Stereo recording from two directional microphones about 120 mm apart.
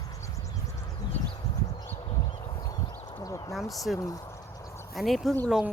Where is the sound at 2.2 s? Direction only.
45° left (ahead or behind).